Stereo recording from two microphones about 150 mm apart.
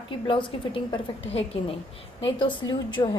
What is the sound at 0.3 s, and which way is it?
A woman's voice, 35° left (ahead or behind).